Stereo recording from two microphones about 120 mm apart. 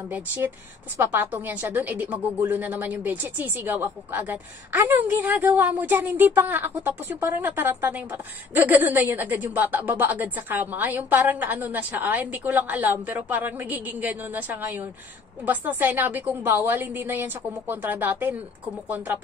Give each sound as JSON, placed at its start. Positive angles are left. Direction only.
{"t": 0.1, "sound": "speech", "side_deg": -15}